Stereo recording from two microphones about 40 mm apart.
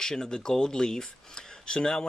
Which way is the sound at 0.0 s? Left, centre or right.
Centre.